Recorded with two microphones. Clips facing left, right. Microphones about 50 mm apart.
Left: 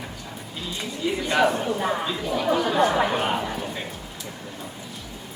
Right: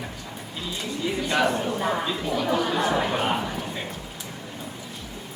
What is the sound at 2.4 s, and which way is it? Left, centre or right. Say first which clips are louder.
Chatter: left 4 dB; centre.